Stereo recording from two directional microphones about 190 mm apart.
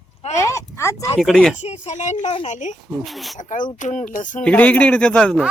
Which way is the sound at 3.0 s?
Centre (ahead or behind).